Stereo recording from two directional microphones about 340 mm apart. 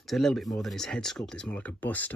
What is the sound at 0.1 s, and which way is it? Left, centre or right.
Speech, centre.